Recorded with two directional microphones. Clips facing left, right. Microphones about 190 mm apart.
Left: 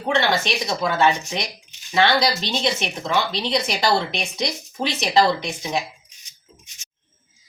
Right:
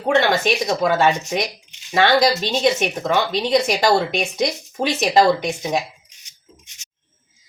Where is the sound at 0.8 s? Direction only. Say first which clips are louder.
Left 1 dB; 45° right (ahead or behind).